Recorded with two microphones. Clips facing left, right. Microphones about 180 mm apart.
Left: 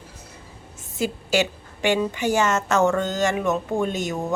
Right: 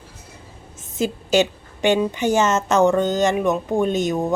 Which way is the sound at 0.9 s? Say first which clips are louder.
Right 4 dB; 20° right (ahead or behind).